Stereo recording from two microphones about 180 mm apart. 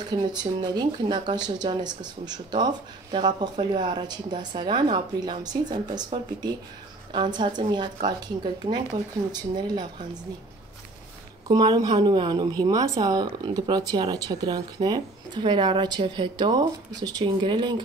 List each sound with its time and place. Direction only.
0.1 s speech: 25° right (ahead or behind)
7.1 s speech: 25° right (ahead or behind)
11.4 s speech: 25° right (ahead or behind)